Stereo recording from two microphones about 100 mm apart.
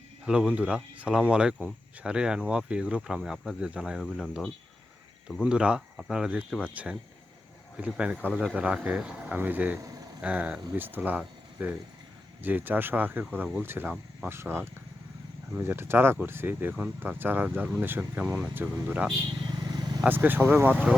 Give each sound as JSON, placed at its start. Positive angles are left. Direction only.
{"t": 0.3, "sound": "speech", "side_deg": -10}
{"t": 7.8, "sound": "speech", "side_deg": -10}
{"t": 19.5, "sound": "vehicle", "side_deg": -45}
{"t": 20.1, "sound": "speech", "side_deg": -20}